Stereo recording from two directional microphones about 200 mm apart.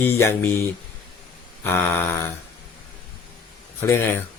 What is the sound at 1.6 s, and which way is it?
Speech, 10° left (ahead or behind).